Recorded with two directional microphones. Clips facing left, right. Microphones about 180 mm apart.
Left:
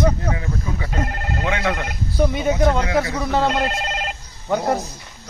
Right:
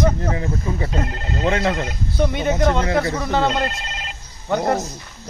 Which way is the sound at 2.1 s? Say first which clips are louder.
Left 1 dB; centre (ahead or behind).